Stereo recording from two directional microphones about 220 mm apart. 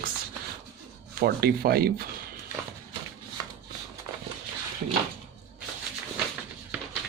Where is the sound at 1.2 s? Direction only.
45° right (ahead or behind).